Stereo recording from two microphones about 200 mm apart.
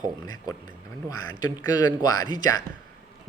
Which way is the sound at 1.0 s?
20° left (ahead or behind).